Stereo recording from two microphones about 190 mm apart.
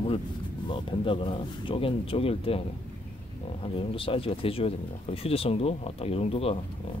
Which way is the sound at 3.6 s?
30° left (ahead or behind).